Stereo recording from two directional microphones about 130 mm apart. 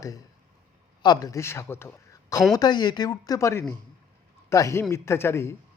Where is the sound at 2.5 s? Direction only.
35° left (ahead or behind).